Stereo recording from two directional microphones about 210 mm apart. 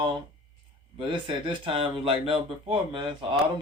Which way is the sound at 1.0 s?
25° right (ahead or behind).